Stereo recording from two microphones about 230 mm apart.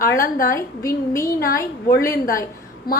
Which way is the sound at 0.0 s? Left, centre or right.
Left.